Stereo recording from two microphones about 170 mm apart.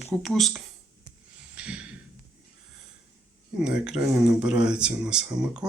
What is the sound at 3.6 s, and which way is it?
Speech, 5° right (ahead or behind).